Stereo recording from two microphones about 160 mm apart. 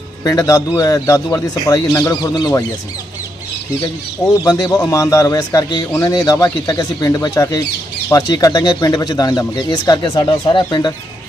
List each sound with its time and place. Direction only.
0.3 s speech: 20° left (ahead or behind)
4.4 s speech: 25° left (ahead or behind)